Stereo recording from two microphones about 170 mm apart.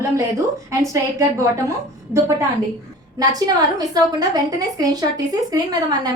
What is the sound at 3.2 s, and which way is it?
A woman's voice, 20° right (ahead or behind).